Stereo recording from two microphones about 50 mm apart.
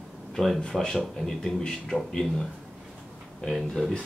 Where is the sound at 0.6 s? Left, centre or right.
Centre.